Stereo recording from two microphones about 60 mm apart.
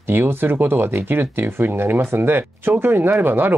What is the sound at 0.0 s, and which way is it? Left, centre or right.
Speech, right.